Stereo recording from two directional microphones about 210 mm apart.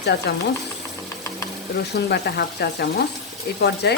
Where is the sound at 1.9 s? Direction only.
50° left (ahead or behind).